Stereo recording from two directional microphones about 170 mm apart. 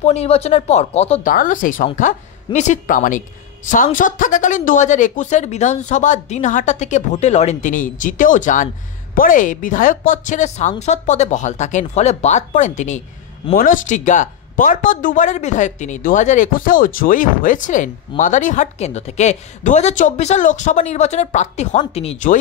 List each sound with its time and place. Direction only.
0.0 s speech: 40° left (ahead or behind)
1.2 s speech: 50° left (ahead or behind)